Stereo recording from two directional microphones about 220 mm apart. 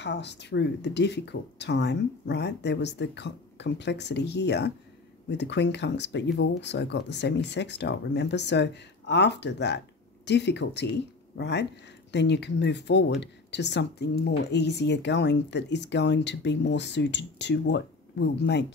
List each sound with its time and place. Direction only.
0.0 s speech: 50° left (ahead or behind)